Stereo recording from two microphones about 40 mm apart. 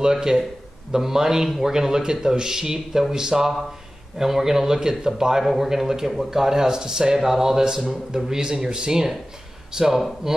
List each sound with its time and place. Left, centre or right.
0.0 s speech: centre